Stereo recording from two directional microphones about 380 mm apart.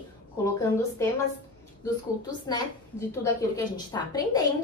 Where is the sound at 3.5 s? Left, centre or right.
Centre.